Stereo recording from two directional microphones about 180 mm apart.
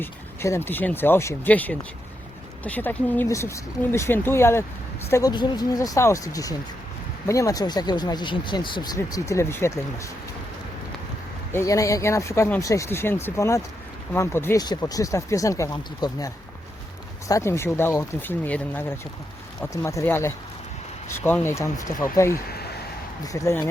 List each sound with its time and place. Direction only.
0.0 s speech: 15° left (ahead or behind)
11.5 s speech: 20° left (ahead or behind)
22.4 s a sound: 60° left (ahead or behind)
23.2 s speech: 20° left (ahead or behind)